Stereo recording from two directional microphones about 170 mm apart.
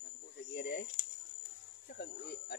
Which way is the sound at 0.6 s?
65° left (ahead or behind).